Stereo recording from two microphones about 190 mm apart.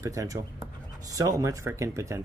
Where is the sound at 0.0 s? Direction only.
15° right (ahead or behind).